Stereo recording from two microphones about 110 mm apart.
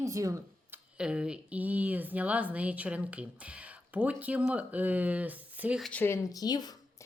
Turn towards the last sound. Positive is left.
turn(degrees=40)  # may be behind; listen again after turning